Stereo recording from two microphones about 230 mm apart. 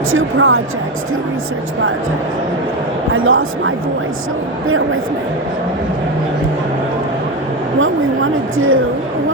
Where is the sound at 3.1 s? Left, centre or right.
Right.